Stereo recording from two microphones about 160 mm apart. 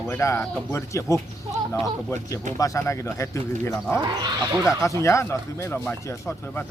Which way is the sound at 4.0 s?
25° right (ahead or behind).